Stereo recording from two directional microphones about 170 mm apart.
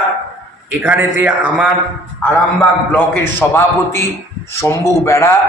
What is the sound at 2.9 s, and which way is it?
A man's voice, 10° left (ahead or behind).